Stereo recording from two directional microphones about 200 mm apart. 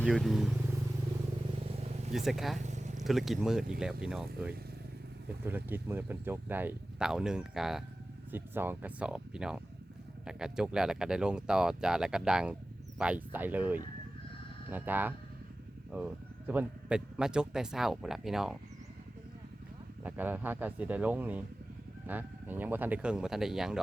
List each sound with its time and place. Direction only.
0.0 s speech: centre (ahead or behind)
1.7 s vehicle: 30° right (ahead or behind)
2.1 s speech: centre (ahead or behind)
2.6 s vehicle: 35° right (ahead or behind)
3.0 s speech: centre (ahead or behind)
20.1 s speech: 10° right (ahead or behind)